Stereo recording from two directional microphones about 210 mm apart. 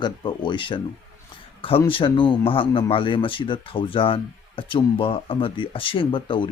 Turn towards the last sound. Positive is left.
turn(degrees=25)  # may be behind; listen again after turning